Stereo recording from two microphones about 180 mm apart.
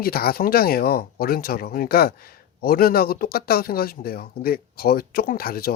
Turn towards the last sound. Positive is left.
turn(degrees=55)  # may be behind; listen again after turning